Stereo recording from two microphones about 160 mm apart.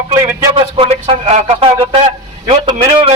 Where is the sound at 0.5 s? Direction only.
35° right (ahead or behind).